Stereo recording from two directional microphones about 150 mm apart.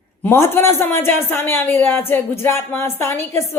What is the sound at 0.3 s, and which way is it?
Speech, 15° left (ahead or behind).